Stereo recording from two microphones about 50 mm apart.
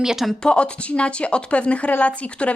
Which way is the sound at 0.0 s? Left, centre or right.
Centre.